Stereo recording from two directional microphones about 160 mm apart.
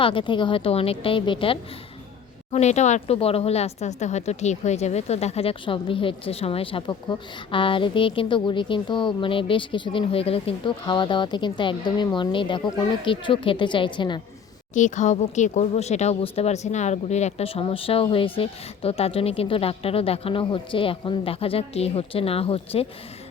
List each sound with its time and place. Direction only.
0.0 s speech: 35° left (ahead or behind)
2.5 s speech: 45° left (ahead or behind)
14.7 s speech: 50° left (ahead or behind)